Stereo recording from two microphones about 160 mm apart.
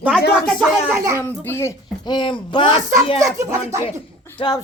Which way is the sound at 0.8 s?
15° right (ahead or behind).